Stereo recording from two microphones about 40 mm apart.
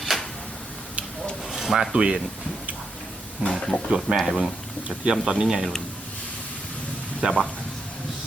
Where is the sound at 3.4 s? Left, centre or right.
Right; by 5.6 s centre.